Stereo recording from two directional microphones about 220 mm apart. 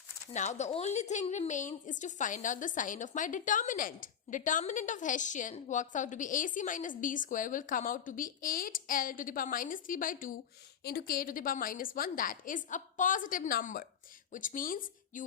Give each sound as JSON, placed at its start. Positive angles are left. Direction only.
{"t": 0.3, "sound": "a woman's voice", "side_deg": 30}